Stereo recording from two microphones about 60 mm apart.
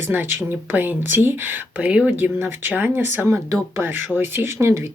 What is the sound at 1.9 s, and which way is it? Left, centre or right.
Speech, right.